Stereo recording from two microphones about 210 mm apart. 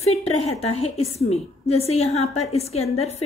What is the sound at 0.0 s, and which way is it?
A woman's voice, 30° left (ahead or behind).